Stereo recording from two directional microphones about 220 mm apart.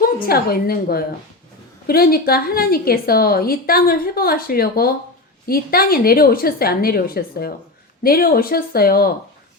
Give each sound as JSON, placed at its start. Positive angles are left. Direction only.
{"t": 0.0, "sound": "a woman's voice", "side_deg": 45}